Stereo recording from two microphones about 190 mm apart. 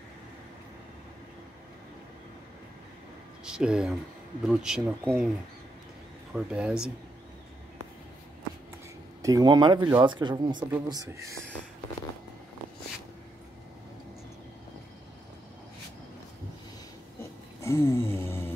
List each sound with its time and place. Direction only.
3.4 s speech: 5° right (ahead or behind)
6.3 s speech: 5° right (ahead or behind)
9.2 s speech: 20° right (ahead or behind)
17.6 s a sound: 15° left (ahead or behind)